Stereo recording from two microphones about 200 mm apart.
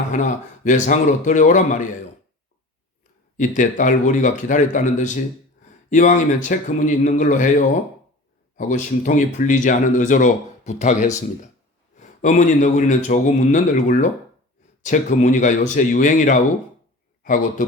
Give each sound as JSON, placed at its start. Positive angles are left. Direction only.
{"t": 0.1, "sound": "speech", "side_deg": 40}
{"t": 3.3, "sound": "speech", "side_deg": 40}
{"t": 8.5, "sound": "speech", "side_deg": 40}